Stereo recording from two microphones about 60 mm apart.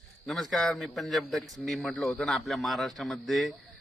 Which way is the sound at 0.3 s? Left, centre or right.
Centre.